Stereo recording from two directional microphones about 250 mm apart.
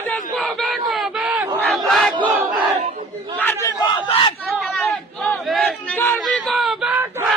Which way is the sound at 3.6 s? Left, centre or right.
Centre.